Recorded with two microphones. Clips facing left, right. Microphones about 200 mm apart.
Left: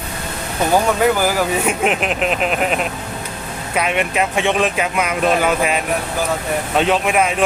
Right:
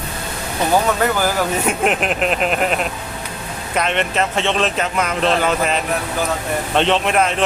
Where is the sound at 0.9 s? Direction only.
10° left (ahead or behind).